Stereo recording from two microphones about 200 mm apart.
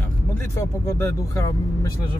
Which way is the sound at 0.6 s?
15° left (ahead or behind).